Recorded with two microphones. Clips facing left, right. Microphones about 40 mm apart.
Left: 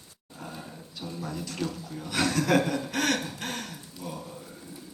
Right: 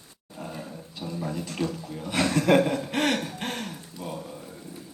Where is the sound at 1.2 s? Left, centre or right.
Right.